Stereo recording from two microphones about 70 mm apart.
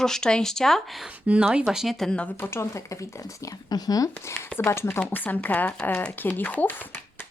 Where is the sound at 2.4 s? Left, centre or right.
Left.